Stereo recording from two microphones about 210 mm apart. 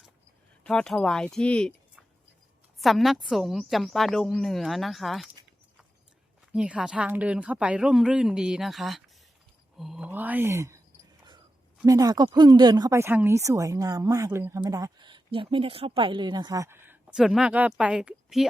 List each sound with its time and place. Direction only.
0.6 s a woman's voice: 5° left (ahead or behind)
6.5 s a woman's voice: 5° right (ahead or behind)
11.9 s speech: 15° right (ahead or behind)